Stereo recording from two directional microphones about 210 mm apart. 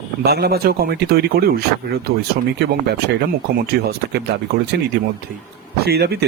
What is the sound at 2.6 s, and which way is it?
Speech, 50° right (ahead or behind).